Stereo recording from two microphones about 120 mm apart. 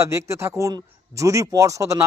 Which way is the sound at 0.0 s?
25° right (ahead or behind).